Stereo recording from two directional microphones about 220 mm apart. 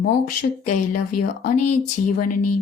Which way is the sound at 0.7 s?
40° left (ahead or behind).